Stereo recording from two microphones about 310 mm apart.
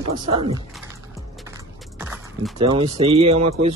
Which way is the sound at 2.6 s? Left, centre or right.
Centre.